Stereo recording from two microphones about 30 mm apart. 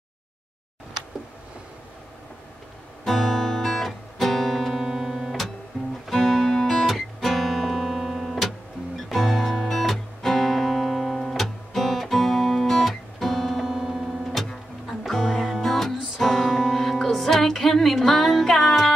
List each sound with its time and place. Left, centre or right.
3.1 s music: centre
4.7 s music: centre
6.1 s music: centre
6.9 s music: centre
14.3 s music: centre